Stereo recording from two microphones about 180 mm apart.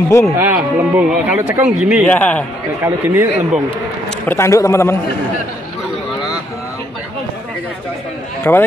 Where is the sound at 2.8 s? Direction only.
15° right (ahead or behind).